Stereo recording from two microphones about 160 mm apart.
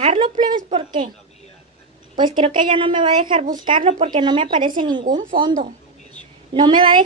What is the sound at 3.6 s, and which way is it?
A woman's voice, 35° right (ahead or behind).